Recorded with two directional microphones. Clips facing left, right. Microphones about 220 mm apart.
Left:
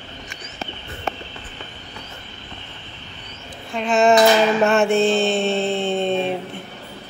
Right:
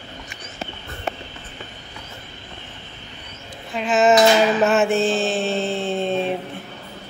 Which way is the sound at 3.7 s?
Centre (ahead or behind).